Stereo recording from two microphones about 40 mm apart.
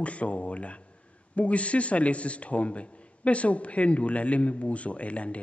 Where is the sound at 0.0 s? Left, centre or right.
Left.